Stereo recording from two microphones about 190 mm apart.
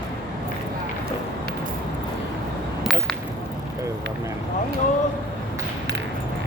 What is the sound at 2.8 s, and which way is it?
Whip, centre (ahead or behind).